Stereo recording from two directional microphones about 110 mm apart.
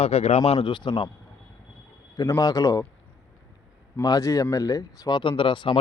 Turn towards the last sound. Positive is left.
turn(degrees=50)  # may be behind; listen again after turning